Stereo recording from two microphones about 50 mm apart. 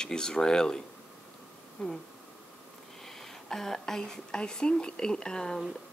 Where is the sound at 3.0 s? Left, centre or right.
Centre.